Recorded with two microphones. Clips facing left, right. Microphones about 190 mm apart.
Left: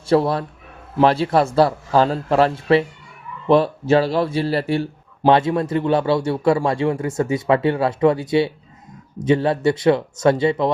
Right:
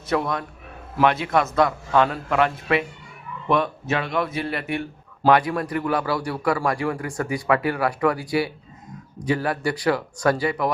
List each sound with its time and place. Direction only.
0.1 s a man's voice: 30° left (ahead or behind)